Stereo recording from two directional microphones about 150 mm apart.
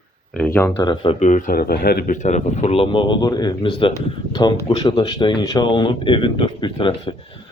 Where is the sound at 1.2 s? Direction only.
55° left (ahead or behind); by 2.1 s 75° left (ahead or behind).